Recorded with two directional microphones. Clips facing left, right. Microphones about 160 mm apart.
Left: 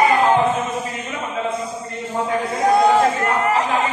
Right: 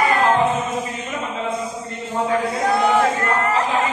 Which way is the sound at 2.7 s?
15° left (ahead or behind).